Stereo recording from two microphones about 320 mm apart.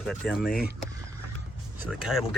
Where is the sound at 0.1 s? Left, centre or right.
Centre.